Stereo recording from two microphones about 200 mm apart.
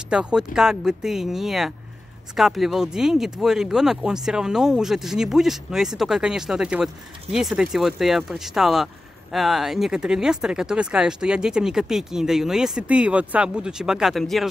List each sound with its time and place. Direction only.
0.1 s speech: 5° right (ahead or behind)